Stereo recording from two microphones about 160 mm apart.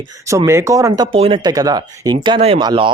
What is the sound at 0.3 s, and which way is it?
Speech, 15° right (ahead or behind).